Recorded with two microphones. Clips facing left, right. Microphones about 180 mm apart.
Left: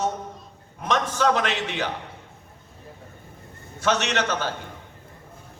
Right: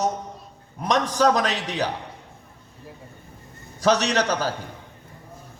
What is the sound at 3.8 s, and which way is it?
Speech, 35° right (ahead or behind).